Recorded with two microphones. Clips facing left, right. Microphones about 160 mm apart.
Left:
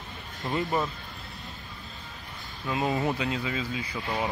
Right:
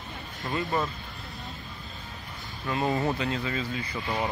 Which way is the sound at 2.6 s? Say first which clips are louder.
Even; 10° left (ahead or behind).